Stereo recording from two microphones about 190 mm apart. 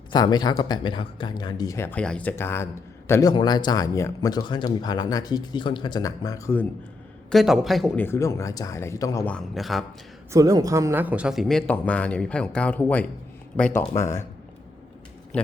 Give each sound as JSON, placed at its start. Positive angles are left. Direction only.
{"t": 0.1, "sound": "a man's voice", "side_deg": 20}
{"t": 7.3, "sound": "speech", "side_deg": 0}
{"t": 8.0, "sound": "speech", "side_deg": 15}
{"t": 9.3, "sound": "speech", "side_deg": 0}
{"t": 10.3, "sound": "speech", "side_deg": -20}